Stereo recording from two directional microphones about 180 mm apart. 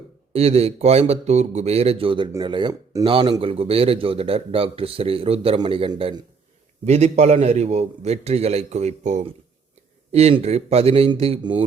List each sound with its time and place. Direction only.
0.3 s speech: 35° right (ahead or behind)
6.8 s speech: 40° right (ahead or behind)